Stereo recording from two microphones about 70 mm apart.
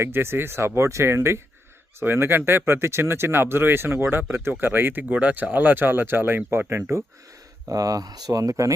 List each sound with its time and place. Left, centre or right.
0.0 s speech: right
7.7 s speech: right